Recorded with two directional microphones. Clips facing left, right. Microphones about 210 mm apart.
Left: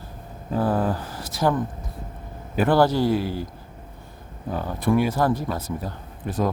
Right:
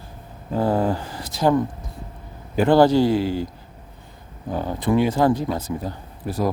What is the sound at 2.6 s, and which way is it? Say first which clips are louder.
Speech: right 4 dB; 15° right (ahead or behind).